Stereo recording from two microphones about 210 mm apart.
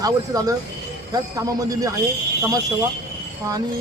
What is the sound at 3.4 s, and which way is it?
Speech, 15° right (ahead or behind).